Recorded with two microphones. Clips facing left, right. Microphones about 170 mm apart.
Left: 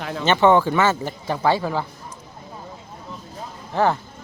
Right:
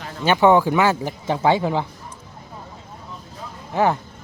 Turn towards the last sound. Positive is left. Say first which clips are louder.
# right 1 dB
turn(degrees=-15)  # may be behind; listen again after turning